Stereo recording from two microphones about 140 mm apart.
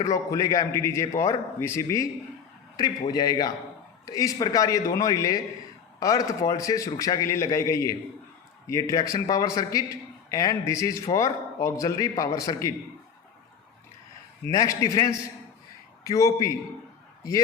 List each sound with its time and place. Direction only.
0.0 s a man's voice: 25° left (ahead or behind)
3.1 s a man's voice: 30° left (ahead or behind)
14.4 s a man's voice: 25° left (ahead or behind)